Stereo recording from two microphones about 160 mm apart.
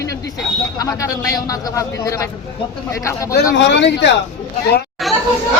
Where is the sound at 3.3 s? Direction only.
90° left.